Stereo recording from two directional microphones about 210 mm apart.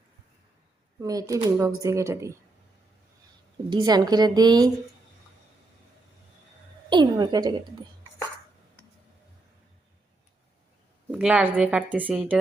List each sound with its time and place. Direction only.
1.0 s speech: 15° right (ahead or behind)
3.7 s a woman's voice: 20° right (ahead or behind)
6.9 s a woman's voice: 20° right (ahead or behind)
11.1 s speech: 5° right (ahead or behind)